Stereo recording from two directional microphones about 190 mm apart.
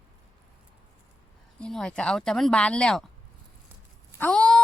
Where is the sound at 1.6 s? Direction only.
5° left (ahead or behind).